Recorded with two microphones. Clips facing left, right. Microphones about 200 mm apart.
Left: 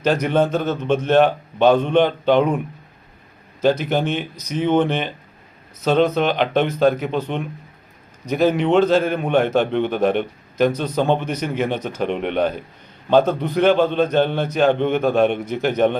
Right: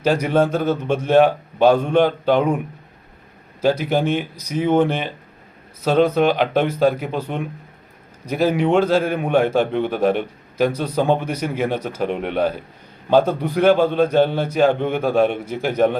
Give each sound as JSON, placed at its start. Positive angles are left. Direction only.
{"t": 0.0, "sound": "a man's voice", "side_deg": -10}
{"t": 3.6, "sound": "a man's voice", "side_deg": -10}